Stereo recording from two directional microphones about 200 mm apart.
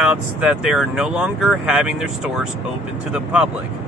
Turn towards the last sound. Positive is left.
turn(degrees=-5)  # may be behind; listen again after turning